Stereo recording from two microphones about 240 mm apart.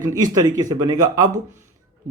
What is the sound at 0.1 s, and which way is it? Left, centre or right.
A man's voice, centre.